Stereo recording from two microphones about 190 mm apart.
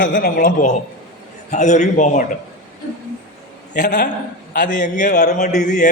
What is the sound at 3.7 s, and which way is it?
A man's voice, 40° left (ahead or behind).